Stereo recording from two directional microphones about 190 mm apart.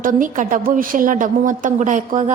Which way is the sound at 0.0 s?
45° right (ahead or behind).